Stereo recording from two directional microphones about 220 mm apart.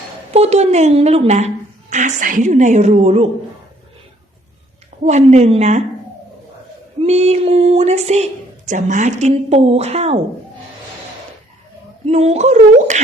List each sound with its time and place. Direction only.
0.3 s a woman's voice: 30° right (ahead or behind)
5.0 s a woman's voice: 30° right (ahead or behind)
7.0 s a woman's voice: 30° right (ahead or behind)
12.0 s a woman's voice: 30° right (ahead or behind)